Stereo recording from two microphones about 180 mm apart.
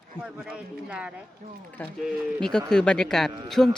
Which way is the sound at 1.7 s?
5° left (ahead or behind).